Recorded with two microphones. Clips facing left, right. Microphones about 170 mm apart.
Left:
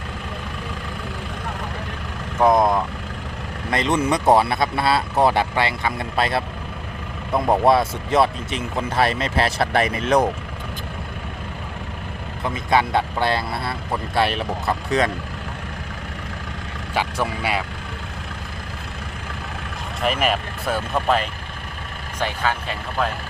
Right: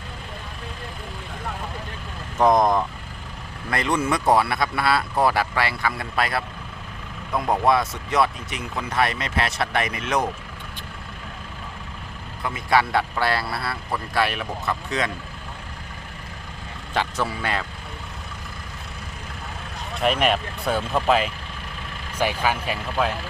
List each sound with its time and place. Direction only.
2.4 s speech: 5° left (ahead or behind)
3.7 s speech: 20° left (ahead or behind)
12.7 s speech: 20° left (ahead or behind)
16.9 s speech: 10° left (ahead or behind)
20.0 s speech: centre (ahead or behind)